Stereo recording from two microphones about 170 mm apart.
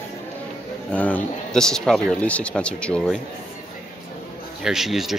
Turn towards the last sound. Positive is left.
turn(degrees=0)  # may be behind; listen again after turning